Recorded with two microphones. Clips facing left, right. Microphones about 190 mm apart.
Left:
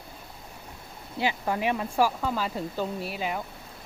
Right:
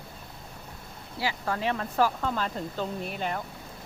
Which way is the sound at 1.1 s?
15° left (ahead or behind).